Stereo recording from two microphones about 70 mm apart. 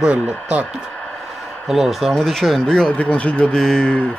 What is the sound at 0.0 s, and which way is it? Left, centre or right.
Speech, centre.